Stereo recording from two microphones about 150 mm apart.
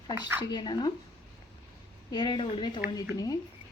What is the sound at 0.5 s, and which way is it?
Speech, 30° left (ahead or behind).